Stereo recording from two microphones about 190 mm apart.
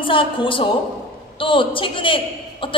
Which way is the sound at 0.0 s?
25° left (ahead or behind).